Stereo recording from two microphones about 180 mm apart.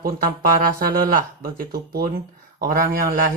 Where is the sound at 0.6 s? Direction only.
55° right (ahead or behind).